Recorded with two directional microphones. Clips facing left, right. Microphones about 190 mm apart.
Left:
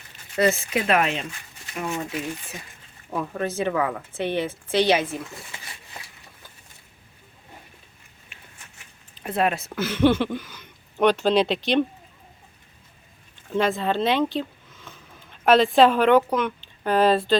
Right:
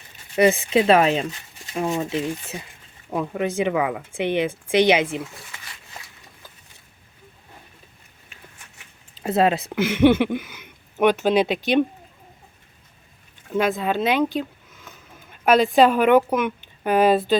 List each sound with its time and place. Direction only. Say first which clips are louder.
0.3 s speech: right 5 dB; 20° right (ahead or behind)
5.5 s a sound: left 1 dB; 25° left (ahead or behind)
9.2 s speech: right 4 dB; 25° right (ahead or behind)
9.6 s speech: right 1 dB; 15° right (ahead or behind)
13.5 s speech: right 1 dB; centre (ahead or behind)